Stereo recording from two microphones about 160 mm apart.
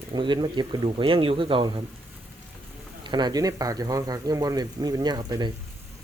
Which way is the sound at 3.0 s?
30° right (ahead or behind).